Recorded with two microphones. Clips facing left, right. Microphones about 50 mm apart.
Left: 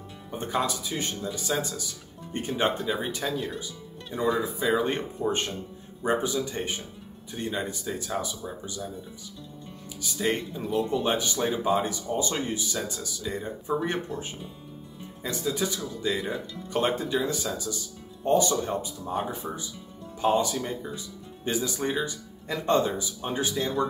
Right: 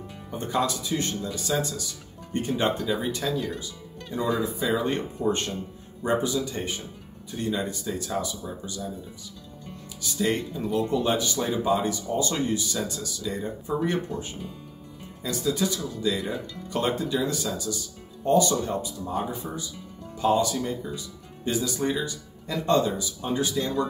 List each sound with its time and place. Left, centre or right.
0.4 s speech: centre
10.0 s speech: centre
15.2 s speech: centre
16.0 s speech: left